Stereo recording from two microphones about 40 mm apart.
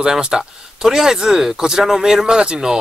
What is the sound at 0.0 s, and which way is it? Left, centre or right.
Speech, centre.